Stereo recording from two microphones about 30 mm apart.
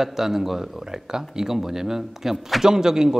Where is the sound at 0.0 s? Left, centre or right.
Centre.